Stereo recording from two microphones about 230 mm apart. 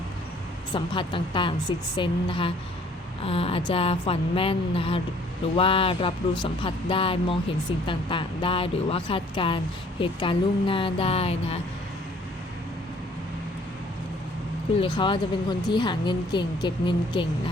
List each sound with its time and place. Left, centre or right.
0.7 s speech: left
14.8 s speech: left